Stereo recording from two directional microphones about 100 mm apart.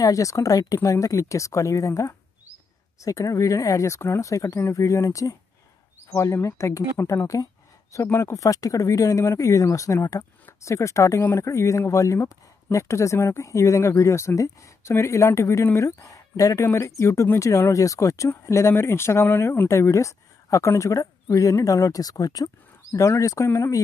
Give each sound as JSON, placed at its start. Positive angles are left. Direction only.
{"t": 0.0, "sound": "speech", "side_deg": 35}